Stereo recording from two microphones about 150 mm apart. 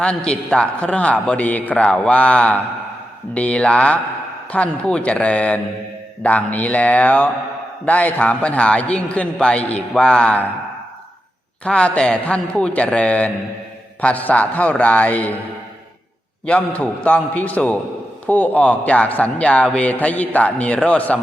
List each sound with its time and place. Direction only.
0.0 s a man's voice: 5° left (ahead or behind)
11.6 s a man's voice: 5° left (ahead or behind)
16.5 s a man's voice: 10° left (ahead or behind)